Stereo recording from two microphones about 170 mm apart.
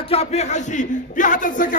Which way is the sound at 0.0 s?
35° left (ahead or behind).